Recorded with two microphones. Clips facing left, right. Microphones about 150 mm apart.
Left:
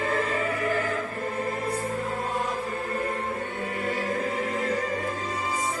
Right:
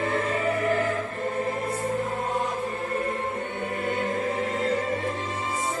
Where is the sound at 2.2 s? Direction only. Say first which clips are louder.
Right 2 dB; 20° right (ahead or behind).